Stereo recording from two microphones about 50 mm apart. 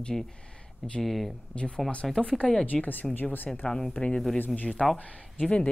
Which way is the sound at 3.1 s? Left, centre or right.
Left.